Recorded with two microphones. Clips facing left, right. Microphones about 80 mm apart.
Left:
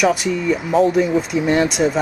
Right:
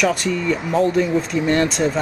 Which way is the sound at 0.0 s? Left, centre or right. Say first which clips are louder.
Left 2 dB; centre.